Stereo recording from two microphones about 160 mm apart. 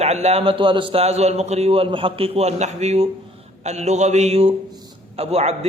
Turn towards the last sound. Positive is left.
turn(degrees=-40)  # may be behind; listen again after turning